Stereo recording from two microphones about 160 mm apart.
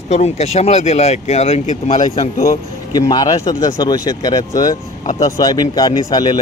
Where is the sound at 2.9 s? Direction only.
25° left (ahead or behind).